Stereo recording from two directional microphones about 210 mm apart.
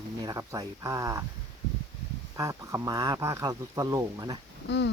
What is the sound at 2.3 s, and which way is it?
Speech, 15° right (ahead or behind).